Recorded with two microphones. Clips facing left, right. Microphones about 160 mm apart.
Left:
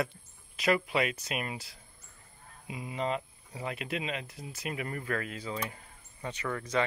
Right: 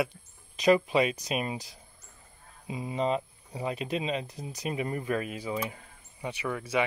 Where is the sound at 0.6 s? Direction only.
20° right (ahead or behind).